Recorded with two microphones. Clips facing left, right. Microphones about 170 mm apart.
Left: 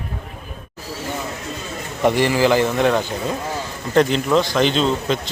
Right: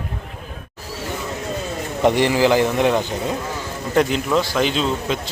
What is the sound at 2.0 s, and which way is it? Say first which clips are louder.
A man's voice: even; 15° right (ahead or behind).